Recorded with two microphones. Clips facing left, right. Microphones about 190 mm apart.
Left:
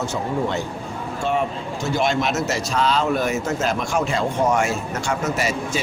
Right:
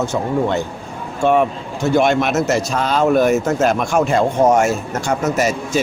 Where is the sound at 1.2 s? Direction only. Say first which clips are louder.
Right 8 dB; 55° right (ahead or behind).